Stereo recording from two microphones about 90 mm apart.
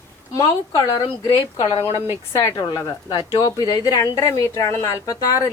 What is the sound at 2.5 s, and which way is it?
A woman's voice, 50° left (ahead or behind).